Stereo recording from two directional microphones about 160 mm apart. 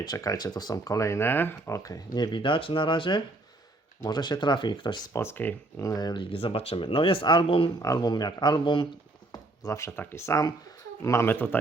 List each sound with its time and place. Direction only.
0.0 s speech: 25° left (ahead or behind)
5.1 s speech: 15° left (ahead or behind); by 7.7 s 35° left (ahead or behind)
7.8 s speech: 25° left (ahead or behind)
9.3 s speech: 20° left (ahead or behind)